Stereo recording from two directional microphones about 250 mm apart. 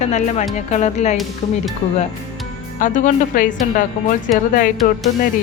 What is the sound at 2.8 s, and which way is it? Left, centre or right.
Speech, left.